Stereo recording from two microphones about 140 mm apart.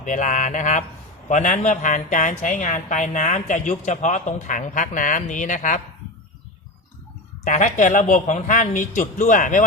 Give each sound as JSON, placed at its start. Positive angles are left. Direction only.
{"t": 0.0, "sound": "speech", "side_deg": 65}
{"t": 7.4, "sound": "speech", "side_deg": 60}